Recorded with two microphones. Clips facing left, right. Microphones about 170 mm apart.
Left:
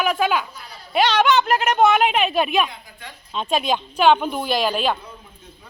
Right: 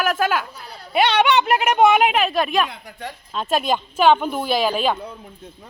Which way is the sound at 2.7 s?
70° right (ahead or behind).